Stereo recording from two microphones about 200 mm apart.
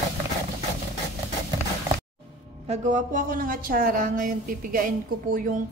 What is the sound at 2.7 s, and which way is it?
A woman's voice, 40° right (ahead or behind).